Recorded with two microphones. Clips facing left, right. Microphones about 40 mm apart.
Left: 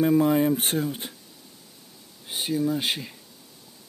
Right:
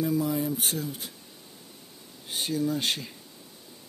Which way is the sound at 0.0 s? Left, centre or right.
Left.